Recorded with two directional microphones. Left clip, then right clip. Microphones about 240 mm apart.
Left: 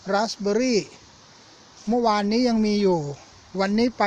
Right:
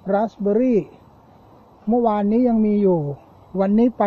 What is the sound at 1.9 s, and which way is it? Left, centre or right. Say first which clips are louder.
Speech: right 2 dB; centre.